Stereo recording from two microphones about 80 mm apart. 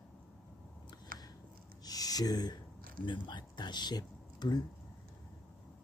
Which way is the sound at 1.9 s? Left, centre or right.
Left.